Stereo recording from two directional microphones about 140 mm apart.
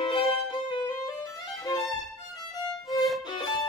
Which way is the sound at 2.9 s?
Centre (ahead or behind).